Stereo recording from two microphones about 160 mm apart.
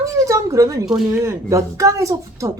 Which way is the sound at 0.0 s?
20° right (ahead or behind).